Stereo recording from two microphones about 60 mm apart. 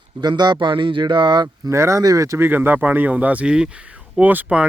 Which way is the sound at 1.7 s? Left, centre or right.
Right.